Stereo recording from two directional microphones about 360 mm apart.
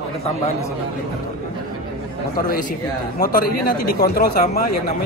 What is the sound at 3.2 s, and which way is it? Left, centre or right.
Speech, left.